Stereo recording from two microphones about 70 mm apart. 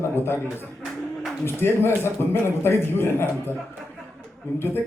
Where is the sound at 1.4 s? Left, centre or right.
Left.